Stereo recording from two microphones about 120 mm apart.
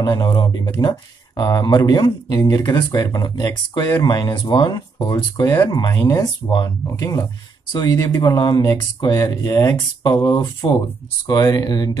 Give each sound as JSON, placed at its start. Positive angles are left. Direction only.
{"t": 0.0, "sound": "speech", "side_deg": 35}
{"t": 9.1, "sound": "speech", "side_deg": 25}